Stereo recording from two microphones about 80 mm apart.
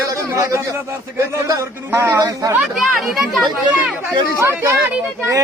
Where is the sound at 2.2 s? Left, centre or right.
Right.